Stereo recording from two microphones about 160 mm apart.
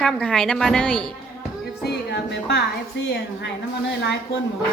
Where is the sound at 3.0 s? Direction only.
90° left.